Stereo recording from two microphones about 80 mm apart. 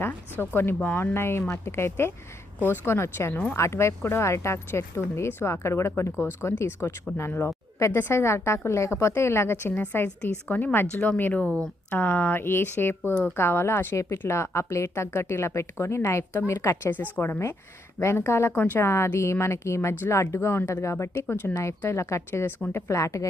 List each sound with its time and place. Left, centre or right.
0.0 s a woman's voice: left